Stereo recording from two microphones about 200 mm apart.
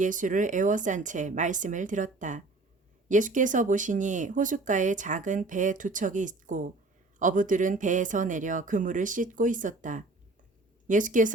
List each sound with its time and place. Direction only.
0.0 s speech: 40° right (ahead or behind)